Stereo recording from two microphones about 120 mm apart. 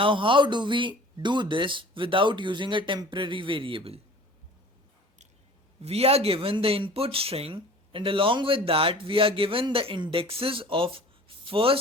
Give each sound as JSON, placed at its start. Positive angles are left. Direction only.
{"t": 0.0, "sound": "speech", "side_deg": -45}
{"t": 5.8, "sound": "speech", "side_deg": -60}